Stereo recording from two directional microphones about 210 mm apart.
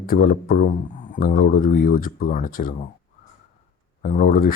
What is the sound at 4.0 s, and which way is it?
Speech, 40° left (ahead or behind).